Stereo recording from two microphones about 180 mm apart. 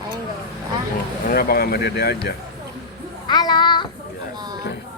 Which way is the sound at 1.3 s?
60° left (ahead or behind).